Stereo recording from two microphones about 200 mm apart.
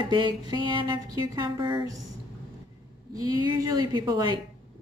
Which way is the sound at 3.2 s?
25° left (ahead or behind).